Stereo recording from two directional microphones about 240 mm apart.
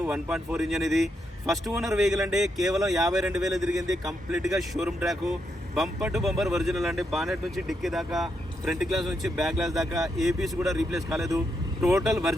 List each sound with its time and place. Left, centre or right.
0.0 s speech: centre
11.8 s speech: centre
12.0 s speech: centre